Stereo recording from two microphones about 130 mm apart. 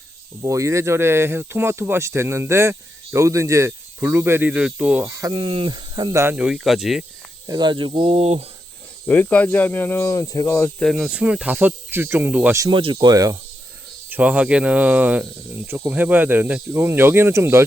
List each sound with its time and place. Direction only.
0.4 s speech: 25° right (ahead or behind)
5.3 s speech: 40° right (ahead or behind); by 6.3 s 25° right (ahead or behind)
6.3 s speech: 5° right (ahead or behind)
7.4 s speech: 30° right (ahead or behind)
8.1 s speech: 50° right (ahead or behind)
9.0 s speech: 10° left (ahead or behind)
10.8 s speech: centre (ahead or behind); by 12.5 s 15° right (ahead or behind)
12.7 s speech: 40° right (ahead or behind)
14.1 s speech: 10° right (ahead or behind)